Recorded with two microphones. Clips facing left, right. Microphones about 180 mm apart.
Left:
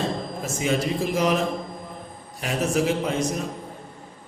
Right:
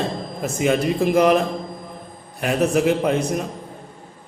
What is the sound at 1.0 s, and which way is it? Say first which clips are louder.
Speech: right 7 dB; 60° right (ahead or behind).